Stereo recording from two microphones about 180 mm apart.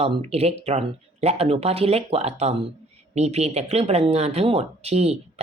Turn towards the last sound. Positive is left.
turn(degrees=-35)  # may be behind; listen again after turning